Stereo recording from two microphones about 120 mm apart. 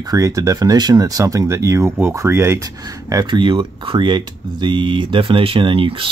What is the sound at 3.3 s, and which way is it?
Speech, 40° right (ahead or behind).